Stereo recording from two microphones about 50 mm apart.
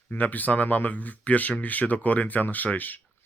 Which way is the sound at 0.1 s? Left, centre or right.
Left.